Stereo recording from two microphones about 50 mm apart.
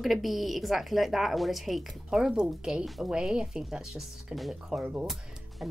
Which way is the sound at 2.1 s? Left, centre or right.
Centre.